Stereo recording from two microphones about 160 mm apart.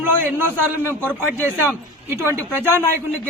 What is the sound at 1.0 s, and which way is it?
Speech, 15° right (ahead or behind).